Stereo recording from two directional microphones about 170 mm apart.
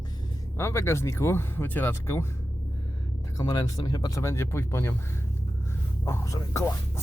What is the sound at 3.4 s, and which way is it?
Speech, 20° left (ahead or behind).